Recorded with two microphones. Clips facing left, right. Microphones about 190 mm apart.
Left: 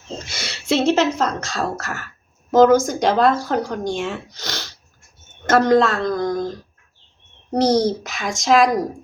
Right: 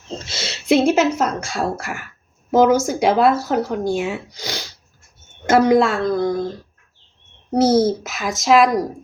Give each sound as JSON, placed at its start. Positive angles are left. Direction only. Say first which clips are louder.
{"t": 0.3, "sound": "speech", "louder": "right 4 dB", "side_deg": -25}
{"t": 7.5, "sound": "a woman's voice", "louder": "right 2 dB", "side_deg": -5}